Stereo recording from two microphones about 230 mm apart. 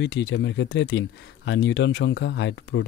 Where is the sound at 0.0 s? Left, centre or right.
Left.